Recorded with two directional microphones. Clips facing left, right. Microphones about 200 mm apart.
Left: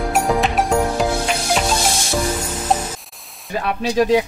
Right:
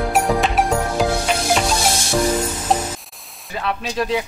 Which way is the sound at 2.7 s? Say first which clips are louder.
Even; centre (ahead or behind).